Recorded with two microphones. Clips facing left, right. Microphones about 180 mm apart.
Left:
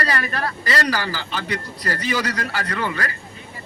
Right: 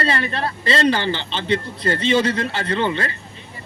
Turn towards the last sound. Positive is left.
turn(degrees=-25)  # may be behind; listen again after turning